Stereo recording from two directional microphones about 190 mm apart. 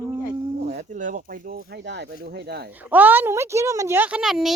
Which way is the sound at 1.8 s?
65° right (ahead or behind).